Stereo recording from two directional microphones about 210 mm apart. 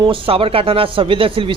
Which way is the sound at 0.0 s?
25° right (ahead or behind).